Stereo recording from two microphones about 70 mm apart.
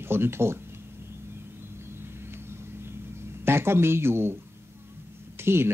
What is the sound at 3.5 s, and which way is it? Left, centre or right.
Speech, right.